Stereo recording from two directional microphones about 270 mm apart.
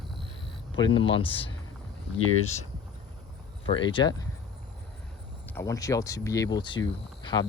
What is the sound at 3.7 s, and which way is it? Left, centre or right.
Speech, centre.